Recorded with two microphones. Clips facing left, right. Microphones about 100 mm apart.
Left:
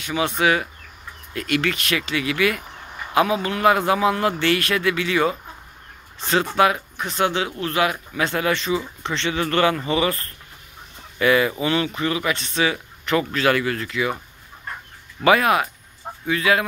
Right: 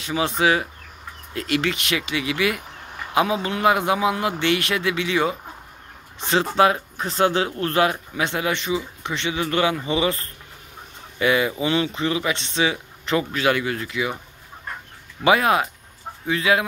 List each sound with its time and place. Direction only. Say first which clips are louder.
0.0 s speech: even; 30° right (ahead or behind)
11.1 s speech: left 2 dB; 20° right (ahead or behind)
15.2 s speech: left 1 dB; 25° right (ahead or behind)